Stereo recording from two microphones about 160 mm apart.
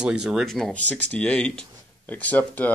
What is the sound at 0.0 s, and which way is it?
Speech, 5° right (ahead or behind).